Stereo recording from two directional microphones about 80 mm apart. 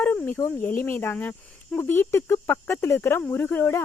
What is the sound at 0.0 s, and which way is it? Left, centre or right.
Speech, centre.